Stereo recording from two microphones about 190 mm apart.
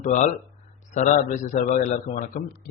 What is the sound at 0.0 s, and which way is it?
A man's voice, 40° left (ahead or behind).